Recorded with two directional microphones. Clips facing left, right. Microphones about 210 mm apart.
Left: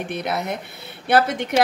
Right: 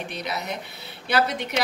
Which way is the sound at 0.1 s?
55° left (ahead or behind).